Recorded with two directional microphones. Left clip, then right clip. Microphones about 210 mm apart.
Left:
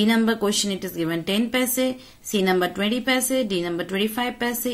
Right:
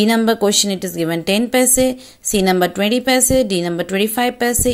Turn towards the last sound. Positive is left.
turn(degrees=-40)  # may be behind; listen again after turning